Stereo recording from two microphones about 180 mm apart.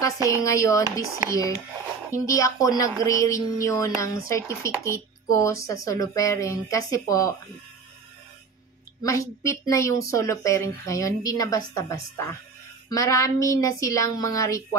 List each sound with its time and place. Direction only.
0.3 s a woman's voice: 15° left (ahead or behind)
2.1 s a woman's voice: 20° left (ahead or behind)
9.0 s a woman's voice: 15° left (ahead or behind)